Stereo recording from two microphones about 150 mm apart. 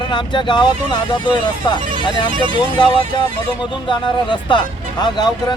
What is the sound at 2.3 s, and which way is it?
Music, 35° right (ahead or behind).